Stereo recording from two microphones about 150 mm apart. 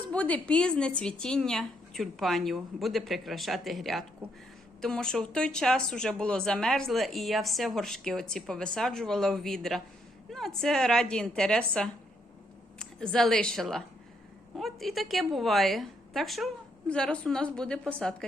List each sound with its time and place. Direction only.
0.1 s a woman's voice: 10° left (ahead or behind)